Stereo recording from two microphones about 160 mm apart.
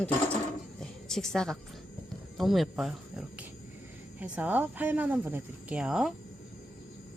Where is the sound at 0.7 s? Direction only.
5° left (ahead or behind).